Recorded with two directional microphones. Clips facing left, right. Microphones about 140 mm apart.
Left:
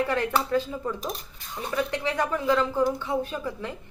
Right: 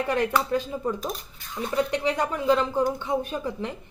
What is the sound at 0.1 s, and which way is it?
Speech, 15° right (ahead or behind).